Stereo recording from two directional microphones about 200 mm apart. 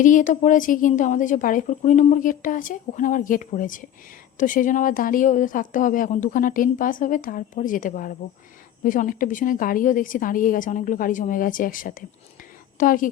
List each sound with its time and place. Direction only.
0.0 s a woman's voice: 40° left (ahead or behind)